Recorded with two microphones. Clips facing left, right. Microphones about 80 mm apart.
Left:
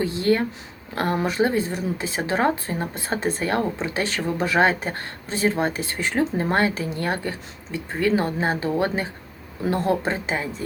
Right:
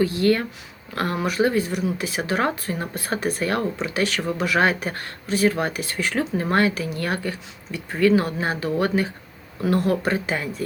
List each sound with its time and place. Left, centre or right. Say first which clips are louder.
0.0 s speech: right 1 dB; left